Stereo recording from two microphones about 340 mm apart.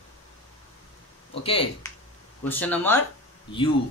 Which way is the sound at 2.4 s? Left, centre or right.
Centre.